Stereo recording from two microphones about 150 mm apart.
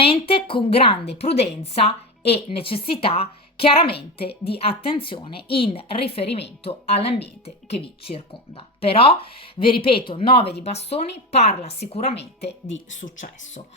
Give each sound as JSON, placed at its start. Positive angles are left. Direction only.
{"t": 0.0, "sound": "a woman's voice", "side_deg": 40}
{"t": 13.0, "sound": "speech", "side_deg": 60}